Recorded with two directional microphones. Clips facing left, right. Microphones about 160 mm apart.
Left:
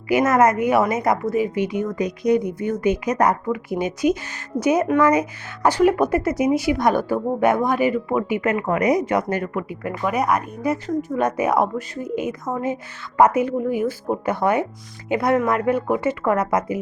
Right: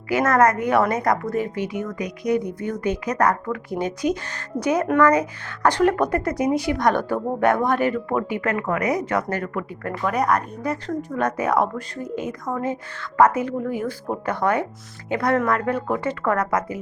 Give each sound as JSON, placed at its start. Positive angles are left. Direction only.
{"t": 0.1, "sound": "a woman's voice", "side_deg": 10}
{"t": 1.5, "sound": "a woman's voice", "side_deg": 20}
{"t": 8.4, "sound": "a woman's voice", "side_deg": 20}